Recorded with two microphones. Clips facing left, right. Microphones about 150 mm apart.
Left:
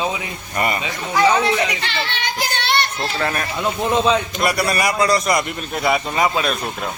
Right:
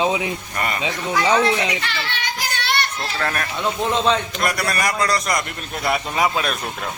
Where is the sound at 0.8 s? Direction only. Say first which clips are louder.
Left 2 dB; 20° right (ahead or behind).